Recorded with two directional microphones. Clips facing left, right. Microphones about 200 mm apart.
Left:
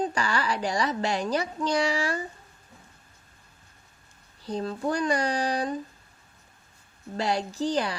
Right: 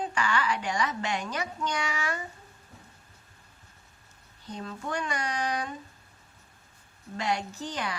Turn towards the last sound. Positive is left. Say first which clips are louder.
# left 8 dB
turn(degrees=35)  # may be behind; listen again after turning